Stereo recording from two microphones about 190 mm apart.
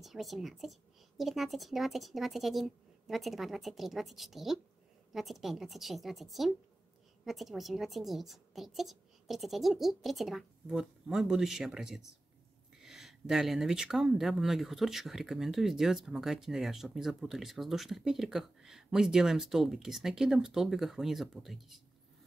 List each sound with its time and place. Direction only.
0.0 s speech: centre (ahead or behind)